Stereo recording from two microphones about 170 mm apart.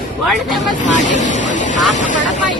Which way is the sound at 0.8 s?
45° left (ahead or behind).